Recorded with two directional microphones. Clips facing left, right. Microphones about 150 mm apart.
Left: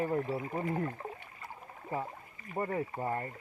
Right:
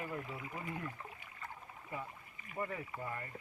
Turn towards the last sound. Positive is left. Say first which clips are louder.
# left 9 dB
turn(degrees=40)  # may be behind; listen again after turning